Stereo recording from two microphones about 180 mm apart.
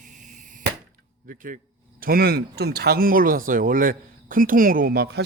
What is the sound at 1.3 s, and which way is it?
Speech, 50° right (ahead or behind).